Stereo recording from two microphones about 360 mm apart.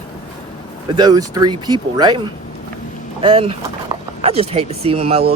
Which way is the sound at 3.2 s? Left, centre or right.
Centre.